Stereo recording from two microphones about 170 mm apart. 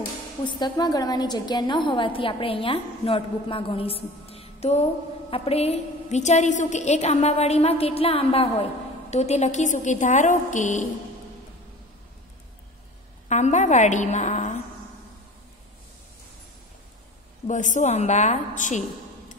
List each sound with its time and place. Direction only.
0.4 s a woman's voice: 25° left (ahead or behind); by 10.9 s 45° left (ahead or behind)
13.3 s a woman's voice: 45° left (ahead or behind)
17.5 s a woman's voice: 45° left (ahead or behind)